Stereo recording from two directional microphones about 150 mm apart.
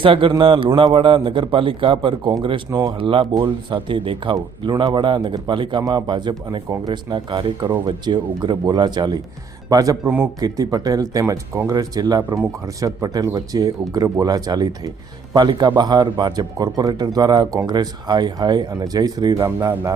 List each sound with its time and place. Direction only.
0.0 s speech: 35° right (ahead or behind)
0.7 s speech: 25° right (ahead or behind)
0.9 s speech: 35° right (ahead or behind)
10.0 s speech: 10° right (ahead or behind)
10.4 s speech: 25° right (ahead or behind)